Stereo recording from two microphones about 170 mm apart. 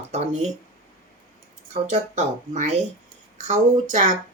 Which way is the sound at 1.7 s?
45° right (ahead or behind).